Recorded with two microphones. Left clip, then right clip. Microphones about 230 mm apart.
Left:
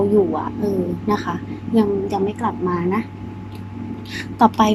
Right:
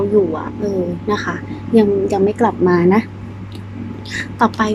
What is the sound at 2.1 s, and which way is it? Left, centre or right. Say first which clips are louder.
Speech: right 6 dB; centre.